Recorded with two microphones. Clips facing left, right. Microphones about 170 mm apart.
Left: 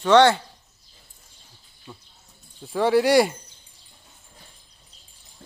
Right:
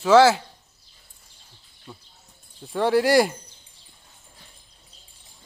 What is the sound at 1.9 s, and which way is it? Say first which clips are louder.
Speech: even; centre (ahead or behind).